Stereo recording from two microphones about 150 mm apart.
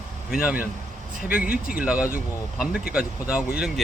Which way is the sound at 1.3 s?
75° left (ahead or behind).